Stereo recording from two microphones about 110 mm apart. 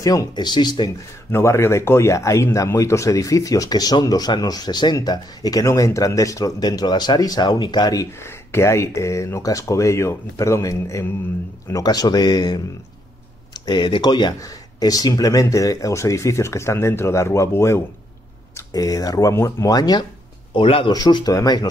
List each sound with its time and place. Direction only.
0.0 s speech: 35° left (ahead or behind)
1.3 s speech: 25° left (ahead or behind)
8.2 s speech: 25° left (ahead or behind); by 20.1 s 40° left (ahead or behind)
20.5 s speech: 50° left (ahead or behind)
20.9 s speech: 35° left (ahead or behind)